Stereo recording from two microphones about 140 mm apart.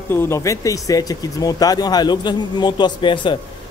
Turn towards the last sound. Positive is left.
turn(degrees=35)  # may be behind; listen again after turning